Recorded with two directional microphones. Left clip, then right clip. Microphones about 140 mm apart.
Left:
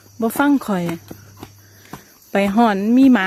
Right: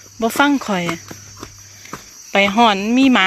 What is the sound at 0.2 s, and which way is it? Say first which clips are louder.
Speech: right 2 dB; 35° left (ahead or behind).